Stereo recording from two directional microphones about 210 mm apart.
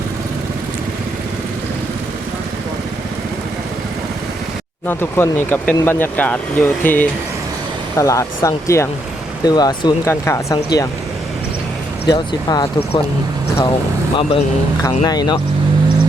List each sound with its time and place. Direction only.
4.9 s speech: 10° left (ahead or behind)
12.0 s speech: 20° left (ahead or behind)
14.2 s speech: 20° left (ahead or behind)